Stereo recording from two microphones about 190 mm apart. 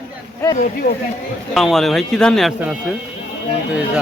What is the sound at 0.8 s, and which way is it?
Speech, 50° left (ahead or behind).